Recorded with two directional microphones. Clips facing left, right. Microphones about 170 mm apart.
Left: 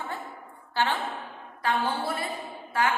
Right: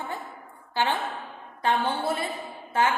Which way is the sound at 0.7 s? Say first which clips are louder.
Right 1 dB; 15° right (ahead or behind).